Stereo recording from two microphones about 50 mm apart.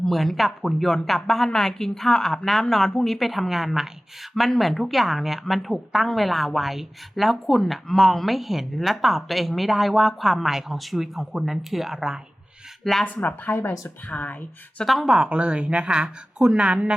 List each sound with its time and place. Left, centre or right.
0.0 s a woman's voice: centre
12.8 s speech: centre
13.7 s a woman's voice: left
14.8 s speech: centre
15.4 s speech: right